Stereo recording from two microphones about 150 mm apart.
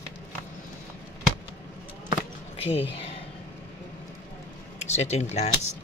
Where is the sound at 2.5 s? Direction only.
40° left (ahead or behind).